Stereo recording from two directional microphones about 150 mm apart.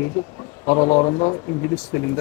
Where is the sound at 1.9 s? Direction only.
10° left (ahead or behind).